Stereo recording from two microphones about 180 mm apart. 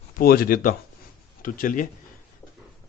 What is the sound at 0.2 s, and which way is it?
Speech, 55° left (ahead or behind).